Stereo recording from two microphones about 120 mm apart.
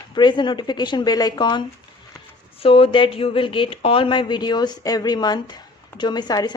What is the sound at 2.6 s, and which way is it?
A woman's voice, 50° left (ahead or behind).